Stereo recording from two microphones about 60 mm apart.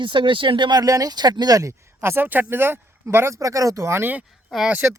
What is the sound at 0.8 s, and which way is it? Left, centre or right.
Speech, right.